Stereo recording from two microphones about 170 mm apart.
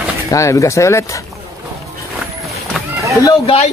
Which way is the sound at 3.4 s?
35° left (ahead or behind).